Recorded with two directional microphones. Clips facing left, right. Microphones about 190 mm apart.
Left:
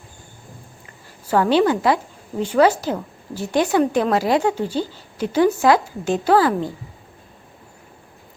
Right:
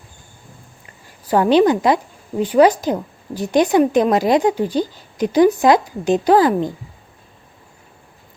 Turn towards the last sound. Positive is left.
turn(degrees=-20)  # may be behind; listen again after turning